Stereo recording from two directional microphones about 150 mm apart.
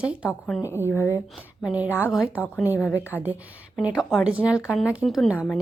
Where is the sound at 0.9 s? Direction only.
15° left (ahead or behind).